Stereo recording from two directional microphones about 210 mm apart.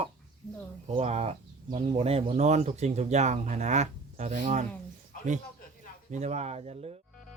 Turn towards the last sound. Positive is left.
turn(degrees=-30)  # may be behind; listen again after turning